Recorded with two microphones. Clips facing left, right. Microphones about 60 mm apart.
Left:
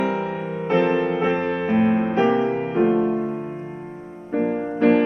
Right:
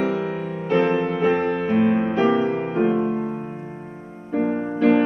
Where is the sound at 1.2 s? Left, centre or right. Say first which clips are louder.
Right 1 dB; left.